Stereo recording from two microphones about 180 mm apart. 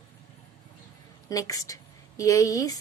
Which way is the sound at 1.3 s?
20° left (ahead or behind).